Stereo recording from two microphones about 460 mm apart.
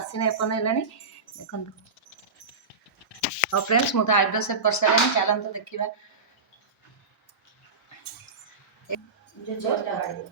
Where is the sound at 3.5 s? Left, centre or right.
Left.